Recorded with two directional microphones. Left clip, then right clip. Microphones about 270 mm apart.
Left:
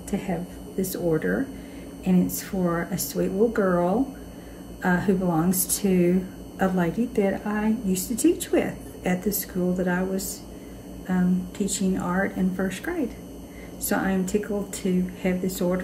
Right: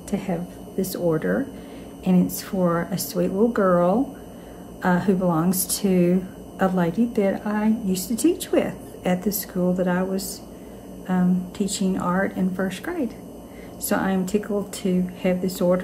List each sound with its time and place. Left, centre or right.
0.1 s a woman's voice: centre